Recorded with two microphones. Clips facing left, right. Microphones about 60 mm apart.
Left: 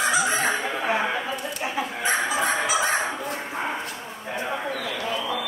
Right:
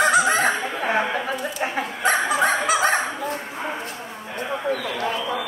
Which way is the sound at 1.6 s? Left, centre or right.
Right.